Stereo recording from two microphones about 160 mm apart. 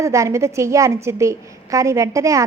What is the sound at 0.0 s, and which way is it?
A woman's voice, 20° right (ahead or behind).